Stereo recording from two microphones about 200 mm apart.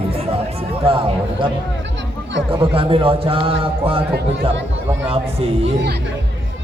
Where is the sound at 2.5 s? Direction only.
25° right (ahead or behind).